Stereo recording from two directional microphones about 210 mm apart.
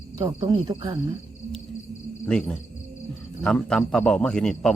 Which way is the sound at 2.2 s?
5° left (ahead or behind).